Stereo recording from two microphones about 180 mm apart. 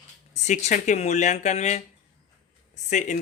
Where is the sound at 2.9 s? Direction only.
45° left (ahead or behind).